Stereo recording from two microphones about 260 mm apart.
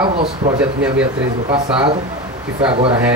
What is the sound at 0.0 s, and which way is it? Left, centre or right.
Speech, centre.